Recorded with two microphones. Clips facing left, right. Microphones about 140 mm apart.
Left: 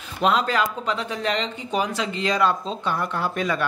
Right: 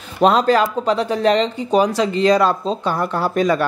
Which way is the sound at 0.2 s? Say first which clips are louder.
Right 7 dB; 35° right (ahead or behind).